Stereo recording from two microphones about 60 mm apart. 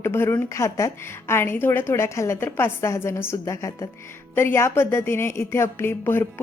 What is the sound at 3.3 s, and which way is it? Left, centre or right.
Speech, left.